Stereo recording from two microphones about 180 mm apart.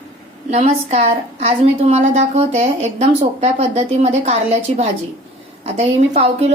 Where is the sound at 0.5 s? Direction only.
40° right (ahead or behind).